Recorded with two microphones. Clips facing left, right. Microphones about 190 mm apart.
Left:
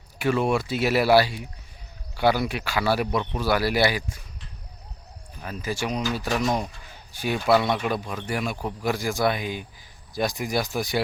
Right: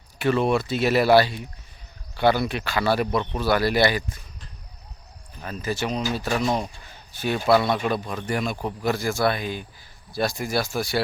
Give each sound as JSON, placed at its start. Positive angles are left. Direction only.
{"t": 0.2, "sound": "speech", "side_deg": 10}
{"t": 5.4, "sound": "speech", "side_deg": 10}
{"t": 6.2, "sound": "speech", "side_deg": -10}
{"t": 7.1, "sound": "speech", "side_deg": 10}